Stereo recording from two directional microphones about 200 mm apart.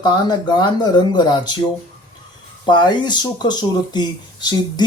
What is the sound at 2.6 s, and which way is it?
Speech, 20° left (ahead or behind).